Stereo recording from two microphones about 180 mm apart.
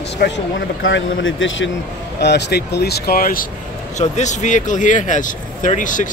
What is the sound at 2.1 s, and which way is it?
Speech, 70° left (ahead or behind).